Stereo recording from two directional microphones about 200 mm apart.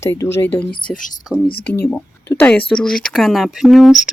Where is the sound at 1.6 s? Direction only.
10° left (ahead or behind).